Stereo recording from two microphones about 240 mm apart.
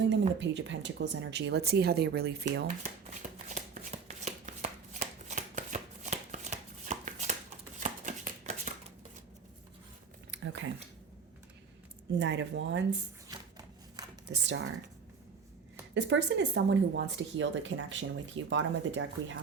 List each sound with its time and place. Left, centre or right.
0.1 s speech: right
2.8 s shuffling cards: right
7.8 s a sound: right
10.3 s a sound: right
12.2 s speech: right
14.3 s speech: right
16.0 s speech: right